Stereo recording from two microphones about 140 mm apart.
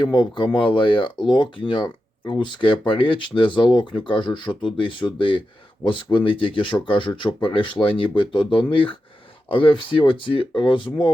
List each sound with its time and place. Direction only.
0.0 s speech: 35° left (ahead or behind)